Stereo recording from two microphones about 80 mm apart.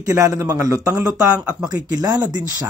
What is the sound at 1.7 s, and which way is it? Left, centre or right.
Speech, right.